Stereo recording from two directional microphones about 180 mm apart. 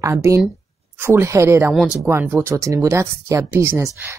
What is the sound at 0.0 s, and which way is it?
Speech, 15° right (ahead or behind).